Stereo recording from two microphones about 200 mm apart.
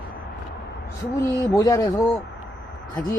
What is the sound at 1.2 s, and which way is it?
Speech, 15° left (ahead or behind).